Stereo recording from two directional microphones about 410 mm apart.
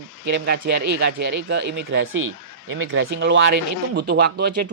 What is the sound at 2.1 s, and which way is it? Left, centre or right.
Speech, right.